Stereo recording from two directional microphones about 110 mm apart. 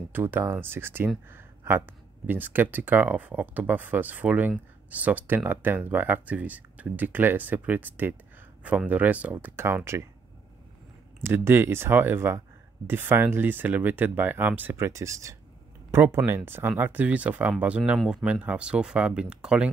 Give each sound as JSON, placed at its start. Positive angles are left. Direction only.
{"t": 0.1, "sound": "speech", "side_deg": -20}
{"t": 11.2, "sound": "speech", "side_deg": -20}
{"t": 14.9, "sound": "speech", "side_deg": -30}